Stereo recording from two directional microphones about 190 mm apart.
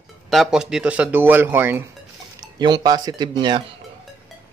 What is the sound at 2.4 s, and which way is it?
Speech, 20° right (ahead or behind).